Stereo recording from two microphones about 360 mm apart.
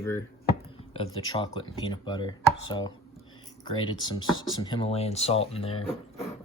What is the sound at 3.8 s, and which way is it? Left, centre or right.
Speech, centre.